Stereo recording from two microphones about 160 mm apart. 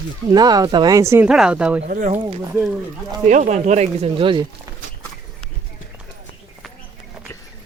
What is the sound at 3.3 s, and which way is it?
Speech, 50° right (ahead or behind).